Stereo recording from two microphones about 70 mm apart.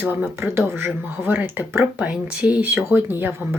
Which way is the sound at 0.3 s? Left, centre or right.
Right.